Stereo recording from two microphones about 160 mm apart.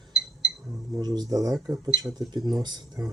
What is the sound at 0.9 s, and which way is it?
Speech, 25° right (ahead or behind).